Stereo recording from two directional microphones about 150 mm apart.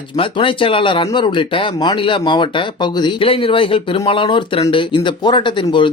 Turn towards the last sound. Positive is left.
turn(degrees=35)  # may be behind; listen again after turning